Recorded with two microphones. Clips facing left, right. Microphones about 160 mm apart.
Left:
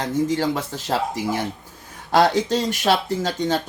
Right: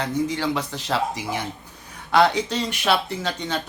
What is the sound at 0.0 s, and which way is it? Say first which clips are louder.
Speech: left 3 dB; 45° left (ahead or behind).